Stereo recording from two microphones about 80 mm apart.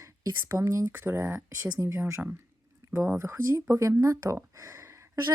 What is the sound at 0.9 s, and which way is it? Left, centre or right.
Speech, right.